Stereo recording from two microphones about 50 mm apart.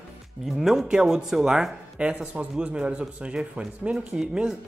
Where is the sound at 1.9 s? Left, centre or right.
Right.